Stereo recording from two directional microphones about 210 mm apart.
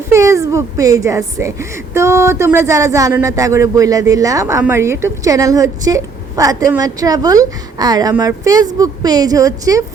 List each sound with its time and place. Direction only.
0.1 s a woman's voice: 15° right (ahead or behind)